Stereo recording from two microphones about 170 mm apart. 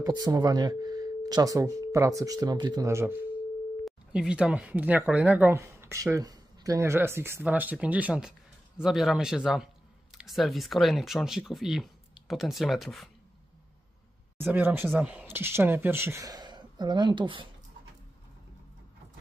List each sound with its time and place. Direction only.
0.0 s speech: 20° right (ahead or behind)
3.8 s speech: 5° right (ahead or behind)
14.4 s speech: 10° right (ahead or behind); by 17.5 s 30° right (ahead or behind)